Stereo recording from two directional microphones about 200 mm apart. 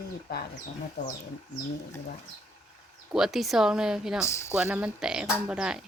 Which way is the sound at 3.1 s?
Centre (ahead or behind).